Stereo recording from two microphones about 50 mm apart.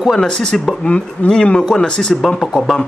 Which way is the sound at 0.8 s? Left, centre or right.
Left.